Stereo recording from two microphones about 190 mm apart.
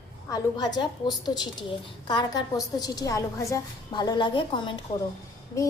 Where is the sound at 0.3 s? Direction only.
20° left (ahead or behind).